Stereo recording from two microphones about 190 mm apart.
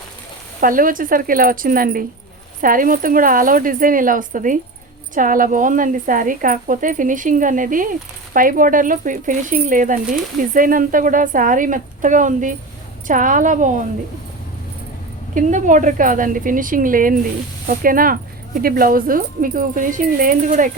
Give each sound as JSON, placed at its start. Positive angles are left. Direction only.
{"t": 0.6, "sound": "a woman's voice", "side_deg": -45}
{"t": 15.4, "sound": "a woman's voice", "side_deg": -40}